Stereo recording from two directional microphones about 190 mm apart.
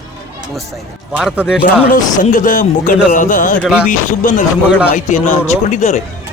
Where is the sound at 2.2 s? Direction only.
45° left (ahead or behind).